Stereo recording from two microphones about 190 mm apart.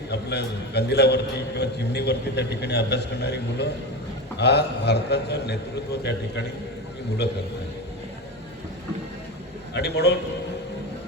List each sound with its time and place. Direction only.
0.1 s a man's voice: 60° left (ahead or behind)
9.7 s a man's voice: 60° left (ahead or behind)